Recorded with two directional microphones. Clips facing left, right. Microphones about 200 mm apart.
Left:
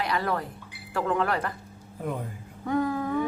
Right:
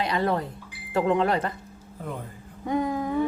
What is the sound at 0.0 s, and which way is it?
Speech, 25° right (ahead or behind).